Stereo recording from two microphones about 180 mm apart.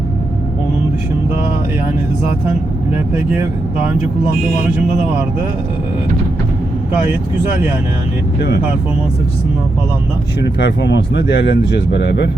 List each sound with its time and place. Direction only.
3.3 s speech: 15° right (ahead or behind)
8.4 s speech: 65° left (ahead or behind)
10.6 s speech: 75° left (ahead or behind)